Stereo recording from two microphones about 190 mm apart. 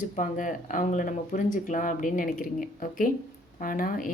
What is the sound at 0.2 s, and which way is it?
Speech, 45° left (ahead or behind).